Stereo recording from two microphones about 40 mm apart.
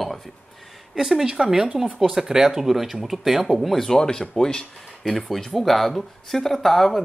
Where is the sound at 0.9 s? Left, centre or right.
Centre.